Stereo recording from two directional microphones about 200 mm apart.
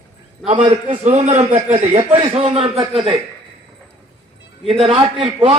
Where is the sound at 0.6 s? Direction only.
30° right (ahead or behind).